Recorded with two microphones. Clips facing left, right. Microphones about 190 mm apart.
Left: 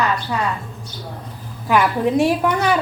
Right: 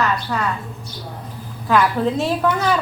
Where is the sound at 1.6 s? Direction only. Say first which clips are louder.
Even; 15° left (ahead or behind).